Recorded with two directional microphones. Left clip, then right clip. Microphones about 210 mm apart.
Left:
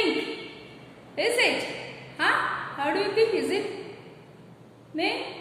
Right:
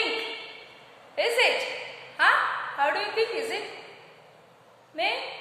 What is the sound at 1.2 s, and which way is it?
A woman's voice, 10° right (ahead or behind).